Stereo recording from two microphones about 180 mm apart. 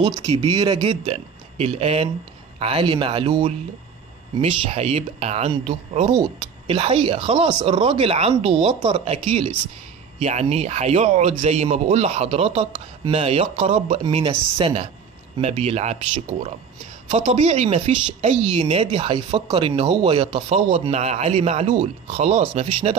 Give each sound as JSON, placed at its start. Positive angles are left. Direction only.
{"t": 0.0, "sound": "a man's voice", "side_deg": -25}
{"t": 15.3, "sound": "a man's voice", "side_deg": -35}